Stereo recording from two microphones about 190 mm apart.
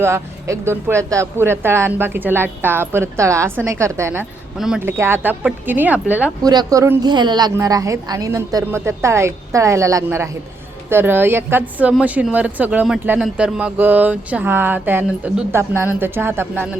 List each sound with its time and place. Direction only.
0.0 s a woman's voice: 15° right (ahead or behind)
6.4 s a woman's voice: 20° right (ahead or behind)